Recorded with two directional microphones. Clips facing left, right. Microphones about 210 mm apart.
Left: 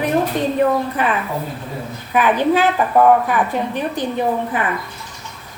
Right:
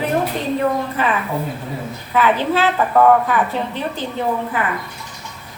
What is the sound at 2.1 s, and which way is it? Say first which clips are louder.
A woman's voice: left 2 dB; 15° left (ahead or behind).